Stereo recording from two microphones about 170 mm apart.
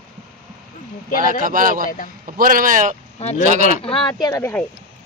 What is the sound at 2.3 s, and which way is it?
A man's voice, 55° right (ahead or behind).